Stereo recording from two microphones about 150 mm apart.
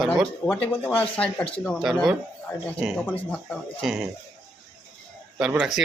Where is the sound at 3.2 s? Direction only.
5° left (ahead or behind).